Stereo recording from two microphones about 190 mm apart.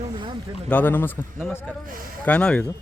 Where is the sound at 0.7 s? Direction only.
10° left (ahead or behind).